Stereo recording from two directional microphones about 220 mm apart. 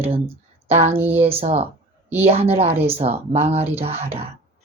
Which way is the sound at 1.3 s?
25° right (ahead or behind).